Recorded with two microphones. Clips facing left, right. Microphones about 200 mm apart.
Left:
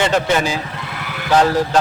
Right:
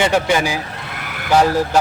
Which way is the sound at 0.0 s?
10° right (ahead or behind).